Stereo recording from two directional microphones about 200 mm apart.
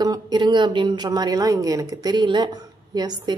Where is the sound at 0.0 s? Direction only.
20° right (ahead or behind).